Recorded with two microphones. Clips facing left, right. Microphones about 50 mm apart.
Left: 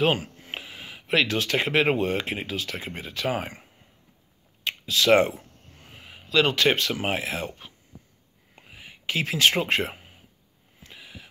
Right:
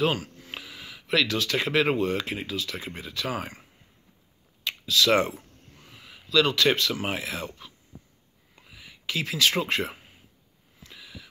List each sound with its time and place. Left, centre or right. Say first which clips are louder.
0.0 s speech: left 2 dB; left
4.6 s speech: left 2 dB; left
10.8 s a sound: left 1 dB; left